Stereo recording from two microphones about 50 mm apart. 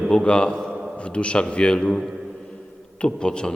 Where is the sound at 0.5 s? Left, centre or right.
Centre.